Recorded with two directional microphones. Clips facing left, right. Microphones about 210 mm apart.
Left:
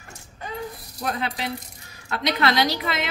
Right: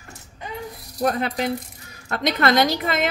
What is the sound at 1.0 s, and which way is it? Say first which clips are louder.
A woman's voice: right 6 dB; 45° right (ahead or behind).